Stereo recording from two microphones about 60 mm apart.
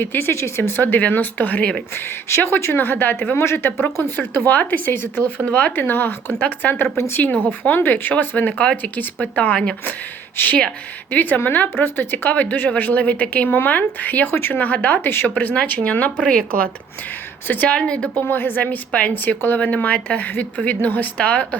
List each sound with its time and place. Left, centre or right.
0.0 s speech: left
0.8 s speech: left
2.3 s speech: left
3.3 s speech: left
4.2 s speech: left
17.5 s a woman's voice: left
18.2 s speech: left
18.9 s speech: centre
19.1 s speech: left